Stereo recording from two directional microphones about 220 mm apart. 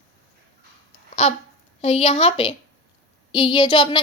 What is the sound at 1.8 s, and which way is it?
A woman's voice, 30° left (ahead or behind).